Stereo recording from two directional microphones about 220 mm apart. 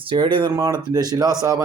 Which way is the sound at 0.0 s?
20° right (ahead or behind).